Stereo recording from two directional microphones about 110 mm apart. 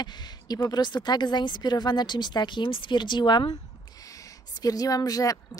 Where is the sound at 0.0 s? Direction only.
40° left (ahead or behind).